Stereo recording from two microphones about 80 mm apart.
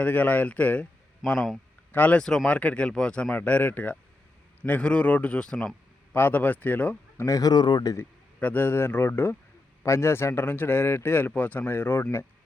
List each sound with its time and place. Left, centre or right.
0.0 s speech: left
1.2 s speech: centre
1.9 s speech: centre
6.1 s speech: left
7.3 s speech: left
8.4 s speech: left